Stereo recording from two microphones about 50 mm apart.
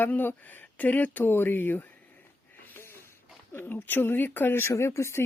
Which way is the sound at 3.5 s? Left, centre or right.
Left.